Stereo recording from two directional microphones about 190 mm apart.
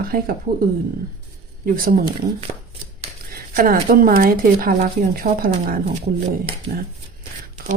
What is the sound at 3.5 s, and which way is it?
Speech, 50° right (ahead or behind).